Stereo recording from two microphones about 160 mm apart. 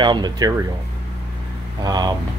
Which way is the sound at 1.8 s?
25° right (ahead or behind).